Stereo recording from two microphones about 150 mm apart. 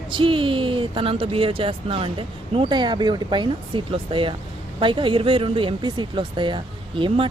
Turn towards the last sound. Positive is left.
turn(degrees=-35)  # may be behind; listen again after turning